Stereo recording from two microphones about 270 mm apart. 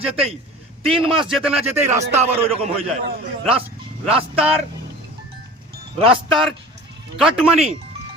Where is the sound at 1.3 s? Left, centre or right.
Centre.